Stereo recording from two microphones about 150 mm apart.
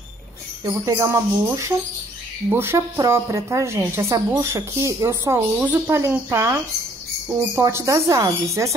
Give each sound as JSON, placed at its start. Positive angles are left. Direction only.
{"t": 0.8, "sound": "a woman's voice", "side_deg": -20}